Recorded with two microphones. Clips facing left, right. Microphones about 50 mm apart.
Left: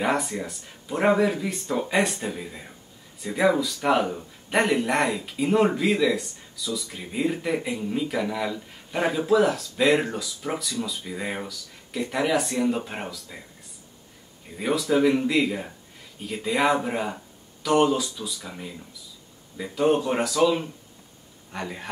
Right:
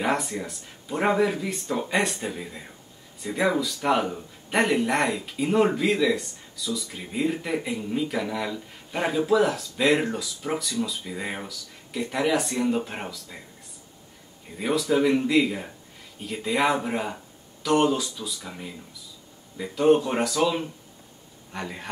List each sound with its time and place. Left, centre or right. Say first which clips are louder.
0.0 s speech: left 1 dB; centre
14.5 s a man's voice: even; centre